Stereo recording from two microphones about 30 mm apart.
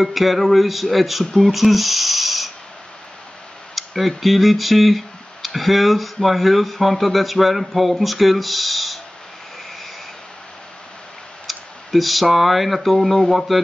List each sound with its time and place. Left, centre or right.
0.0 s speech: centre
3.7 s speech: centre
11.4 s speech: centre